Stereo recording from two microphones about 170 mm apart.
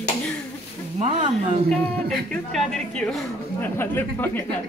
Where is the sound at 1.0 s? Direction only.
30° right (ahead or behind).